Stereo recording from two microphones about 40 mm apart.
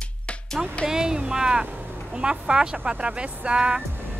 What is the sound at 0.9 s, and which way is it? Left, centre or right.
Speech, centre.